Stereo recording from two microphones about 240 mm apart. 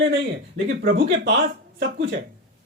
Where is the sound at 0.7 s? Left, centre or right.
Right.